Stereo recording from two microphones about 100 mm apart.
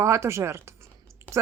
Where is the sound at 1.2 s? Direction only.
30° right (ahead or behind).